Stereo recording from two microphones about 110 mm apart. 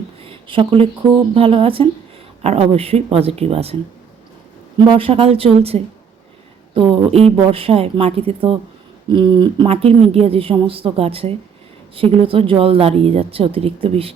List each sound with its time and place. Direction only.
0.3 s a woman's voice: 50° right (ahead or behind)
2.4 s a woman's voice: 70° right (ahead or behind)
4.9 s a woman's voice: 55° right (ahead or behind)
9.0 s speech: 45° right (ahead or behind)
9.6 s a woman's voice: 65° right (ahead or behind)